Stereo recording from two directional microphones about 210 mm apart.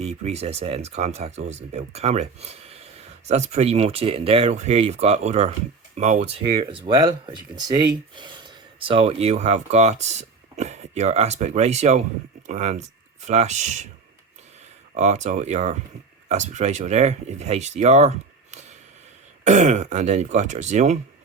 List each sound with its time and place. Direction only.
0.0 s speech: 30° right (ahead or behind)
14.9 s speech: 35° right (ahead or behind)